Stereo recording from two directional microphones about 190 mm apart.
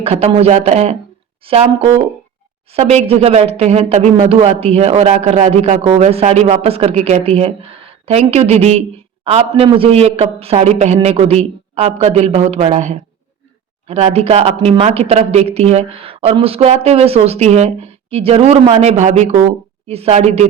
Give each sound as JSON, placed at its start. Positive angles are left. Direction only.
{"t": 0.0, "sound": "speech", "side_deg": -30}